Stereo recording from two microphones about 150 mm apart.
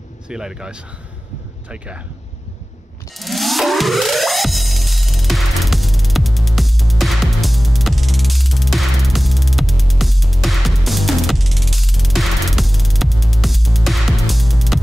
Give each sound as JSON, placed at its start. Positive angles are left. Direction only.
{"t": 0.3, "sound": "speech", "side_deg": -5}
{"t": 3.2, "sound": "music", "side_deg": 0}